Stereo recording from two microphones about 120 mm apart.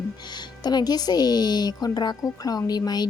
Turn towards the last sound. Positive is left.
turn(degrees=35)  # may be behind; listen again after turning